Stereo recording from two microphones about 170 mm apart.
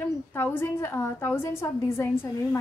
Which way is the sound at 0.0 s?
10° left (ahead or behind).